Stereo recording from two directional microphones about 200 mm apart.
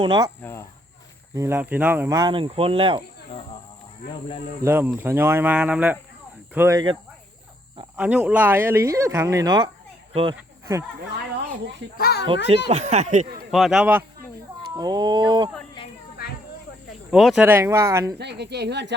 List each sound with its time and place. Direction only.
0.0 s speech: 25° right (ahead or behind)
0.4 s speech: 15° left (ahead or behind)
1.4 s speech: 10° right (ahead or behind); by 3.0 s 25° right (ahead or behind)
3.2 s speech: 25° left (ahead or behind)
4.6 s speech: 10° right (ahead or behind)
7.9 s speech: 5° right (ahead or behind)
11.9 s a child's voice: 50° left (ahead or behind)
12.7 s speech: 35° right (ahead or behind)
13.5 s speech: centre (ahead or behind)
14.8 s speech: 20° right (ahead or behind)
17.1 s speech: 5° right (ahead or behind)
18.2 s speech: 55° right (ahead or behind)